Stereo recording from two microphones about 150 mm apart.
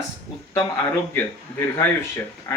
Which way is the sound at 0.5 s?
20° left (ahead or behind).